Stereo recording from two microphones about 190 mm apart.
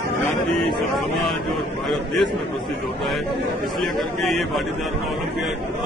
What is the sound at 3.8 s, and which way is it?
Speech, centre (ahead or behind).